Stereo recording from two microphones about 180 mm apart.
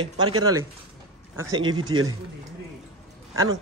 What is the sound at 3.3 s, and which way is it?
Speech, 20° right (ahead or behind).